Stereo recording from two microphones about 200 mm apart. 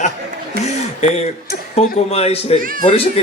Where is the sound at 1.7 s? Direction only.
30° left (ahead or behind).